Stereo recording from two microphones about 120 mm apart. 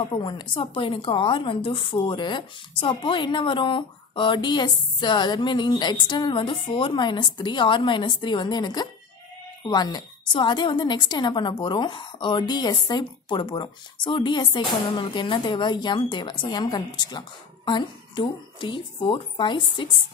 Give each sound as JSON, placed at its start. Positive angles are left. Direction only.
{"t": 0.1, "sound": "a woman's voice", "side_deg": 40}